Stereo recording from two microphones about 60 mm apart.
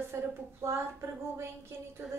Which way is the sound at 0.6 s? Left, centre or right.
Right.